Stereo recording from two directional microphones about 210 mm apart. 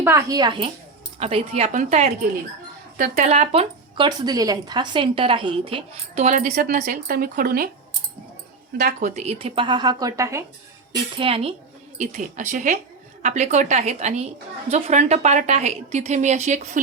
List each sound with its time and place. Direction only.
0.0 s a woman's voice: 10° right (ahead or behind); by 7.7 s 45° right (ahead or behind)
8.8 s speech: 35° right (ahead or behind); by 10.4 s 15° right (ahead or behind)
10.9 s a woman's voice: 25° right (ahead or behind)